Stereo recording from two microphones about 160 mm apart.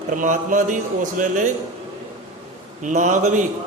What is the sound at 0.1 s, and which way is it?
Speech, 55° right (ahead or behind).